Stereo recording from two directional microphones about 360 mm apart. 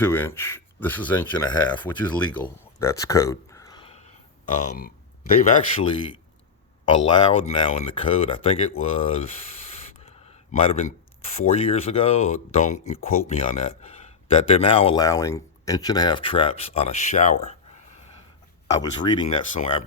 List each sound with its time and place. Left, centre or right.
0.0 s speech: centre
17.4 s a sound: centre
18.8 s speech: centre